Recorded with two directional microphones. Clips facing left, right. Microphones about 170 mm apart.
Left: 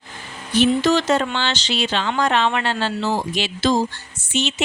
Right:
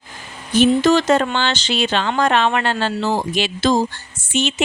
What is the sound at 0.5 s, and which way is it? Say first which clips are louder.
Speech: right 3 dB; 50° right (ahead or behind).